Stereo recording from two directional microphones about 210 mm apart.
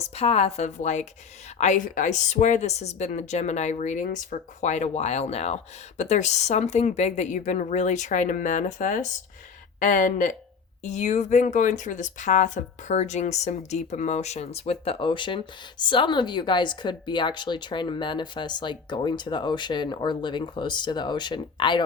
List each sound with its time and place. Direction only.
0.0 s speech: 30° left (ahead or behind)